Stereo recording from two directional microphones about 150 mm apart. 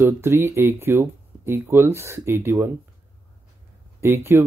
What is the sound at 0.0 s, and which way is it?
Speech, 15° right (ahead or behind).